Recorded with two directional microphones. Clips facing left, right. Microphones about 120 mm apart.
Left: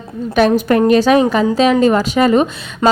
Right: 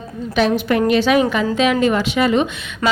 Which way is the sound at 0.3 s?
45° left (ahead or behind).